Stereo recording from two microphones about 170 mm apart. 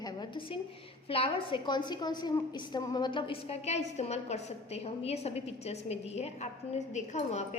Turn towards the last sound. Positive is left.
turn(degrees=45)  # may be behind; listen again after turning